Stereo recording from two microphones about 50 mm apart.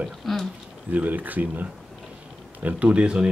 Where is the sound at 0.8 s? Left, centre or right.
Right.